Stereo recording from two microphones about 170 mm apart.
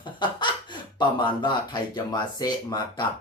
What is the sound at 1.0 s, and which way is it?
Speech, 25° left (ahead or behind).